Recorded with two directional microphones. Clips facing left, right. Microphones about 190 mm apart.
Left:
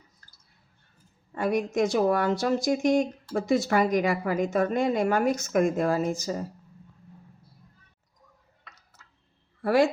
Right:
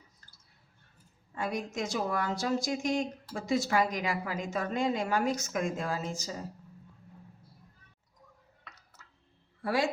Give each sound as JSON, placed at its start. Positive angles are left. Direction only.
{"t": 1.4, "sound": "a woman's voice", "side_deg": 60}